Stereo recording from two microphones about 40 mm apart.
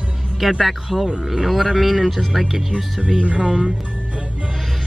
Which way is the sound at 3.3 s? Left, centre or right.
Right.